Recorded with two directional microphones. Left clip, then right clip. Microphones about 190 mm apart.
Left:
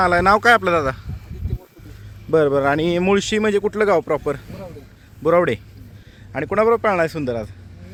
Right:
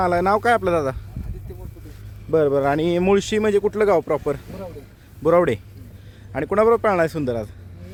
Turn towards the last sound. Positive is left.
turn(degrees=-10)  # may be behind; listen again after turning